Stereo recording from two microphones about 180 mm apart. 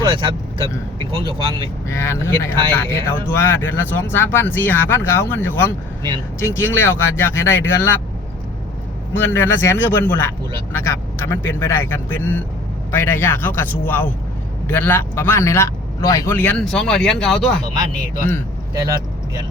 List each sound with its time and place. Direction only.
0.1 s speech: 25° right (ahead or behind)
1.9 s speech: 15° left (ahead or behind)
9.1 s speech: 10° left (ahead or behind)